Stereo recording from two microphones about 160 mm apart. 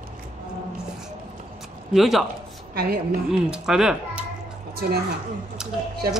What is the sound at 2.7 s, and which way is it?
Speech, 70° right (ahead or behind).